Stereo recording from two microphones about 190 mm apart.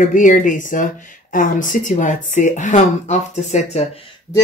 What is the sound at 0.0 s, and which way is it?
Speech, 45° left (ahead or behind).